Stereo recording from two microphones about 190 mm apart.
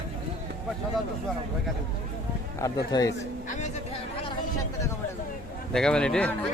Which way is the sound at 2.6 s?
20° left (ahead or behind).